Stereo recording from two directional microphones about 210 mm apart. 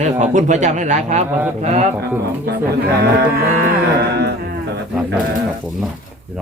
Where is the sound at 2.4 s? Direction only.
50° right (ahead or behind).